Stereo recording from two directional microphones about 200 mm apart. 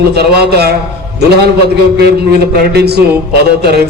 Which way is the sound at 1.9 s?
50° right (ahead or behind).